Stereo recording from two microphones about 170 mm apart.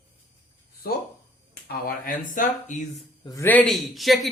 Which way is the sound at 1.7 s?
55° left (ahead or behind).